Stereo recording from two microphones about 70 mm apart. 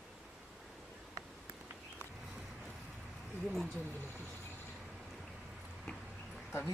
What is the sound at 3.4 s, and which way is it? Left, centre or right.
Speech, centre.